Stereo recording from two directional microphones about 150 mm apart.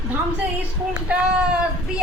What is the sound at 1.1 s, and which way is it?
Speech, 5° right (ahead or behind).